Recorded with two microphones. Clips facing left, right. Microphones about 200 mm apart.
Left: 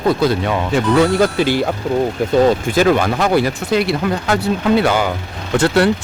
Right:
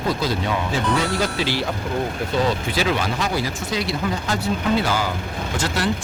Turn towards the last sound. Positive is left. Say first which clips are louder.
# left 9 dB
turn(degrees=60)  # may be behind; listen again after turning